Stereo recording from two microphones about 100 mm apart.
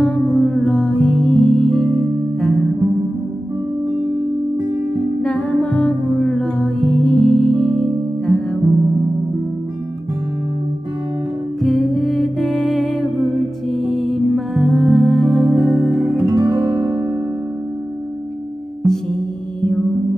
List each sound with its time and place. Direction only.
0.0 s music: 10° left (ahead or behind)
5.2 s music: 10° left (ahead or behind)
11.6 s music: centre (ahead or behind)
16.3 s music: 30° right (ahead or behind)
18.8 s music: 5° left (ahead or behind)